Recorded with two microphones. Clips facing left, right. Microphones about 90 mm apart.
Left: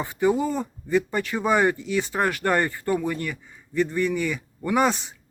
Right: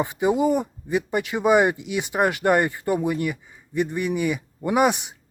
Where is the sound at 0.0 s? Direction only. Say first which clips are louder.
Right 2 dB; 20° right (ahead or behind).